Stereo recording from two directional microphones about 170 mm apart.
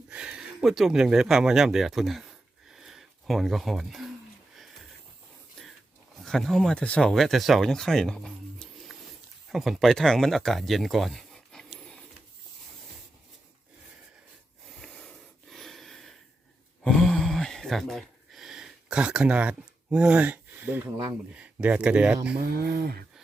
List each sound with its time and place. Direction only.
0.1 s speech: 5° right (ahead or behind)
2.7 s a sound: centre (ahead or behind)
6.2 s speech: centre (ahead or behind)
14.7 s snort: centre (ahead or behind)
16.8 s speech: 5° left (ahead or behind)
22.4 s speech: 65° right (ahead or behind)